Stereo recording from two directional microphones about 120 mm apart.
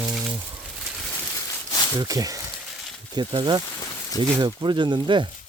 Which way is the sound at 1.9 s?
30° right (ahead or behind).